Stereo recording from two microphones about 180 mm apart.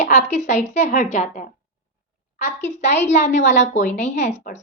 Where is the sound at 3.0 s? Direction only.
40° left (ahead or behind).